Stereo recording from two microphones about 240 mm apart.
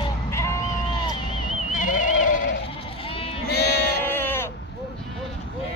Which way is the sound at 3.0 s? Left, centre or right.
Left.